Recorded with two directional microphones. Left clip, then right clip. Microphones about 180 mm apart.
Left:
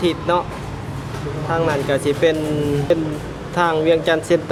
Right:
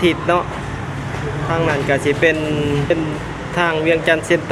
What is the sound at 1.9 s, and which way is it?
Speech, 15° left (ahead or behind).